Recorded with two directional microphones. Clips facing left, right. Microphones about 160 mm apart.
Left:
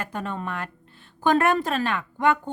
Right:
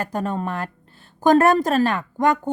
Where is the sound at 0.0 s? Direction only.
40° right (ahead or behind).